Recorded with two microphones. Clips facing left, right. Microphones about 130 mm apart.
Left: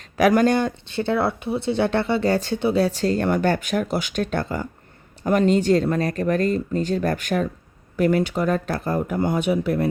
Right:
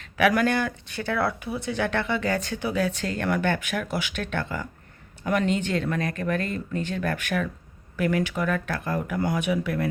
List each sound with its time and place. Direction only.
0.0 s speech: 35° left (ahead or behind)